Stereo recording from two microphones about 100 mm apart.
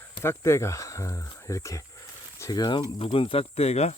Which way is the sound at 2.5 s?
45° left (ahead or behind).